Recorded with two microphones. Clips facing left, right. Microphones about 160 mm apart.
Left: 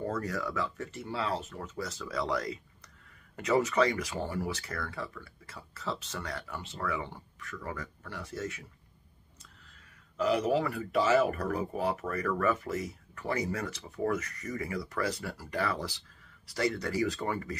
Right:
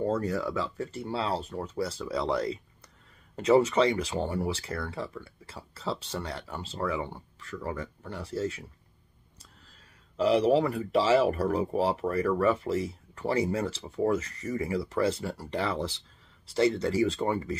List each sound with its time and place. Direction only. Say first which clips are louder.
0.0 s speech: right 5 dB; 30° right (ahead or behind)
10.1 s speech: right 5 dB; 30° right (ahead or behind)